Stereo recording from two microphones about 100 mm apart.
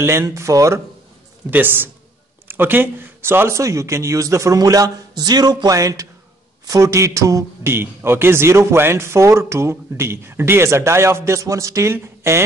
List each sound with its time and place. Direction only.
0.0 s speech: 30° right (ahead or behind)
1.5 s a man's voice: 20° right (ahead or behind)